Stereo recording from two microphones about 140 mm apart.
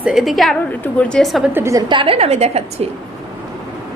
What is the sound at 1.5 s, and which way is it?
Speech, 20° right (ahead or behind).